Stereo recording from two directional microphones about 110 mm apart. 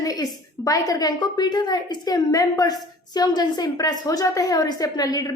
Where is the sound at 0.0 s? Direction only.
30° left (ahead or behind).